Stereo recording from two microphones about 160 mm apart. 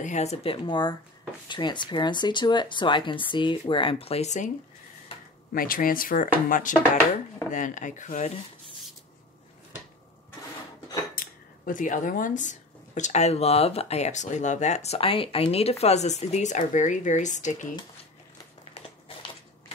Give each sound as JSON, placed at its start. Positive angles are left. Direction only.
{"t": 0.0, "sound": "speech", "side_deg": 45}
{"t": 5.5, "sound": "speech", "side_deg": 65}
{"t": 11.1, "sound": "speech", "side_deg": 60}
{"t": 18.8, "sound": "a sound", "side_deg": 35}